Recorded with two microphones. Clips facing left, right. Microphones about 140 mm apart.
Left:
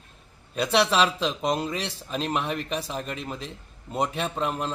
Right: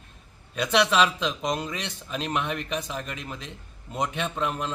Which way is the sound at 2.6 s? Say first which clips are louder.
Left 1 dB; 35° left (ahead or behind).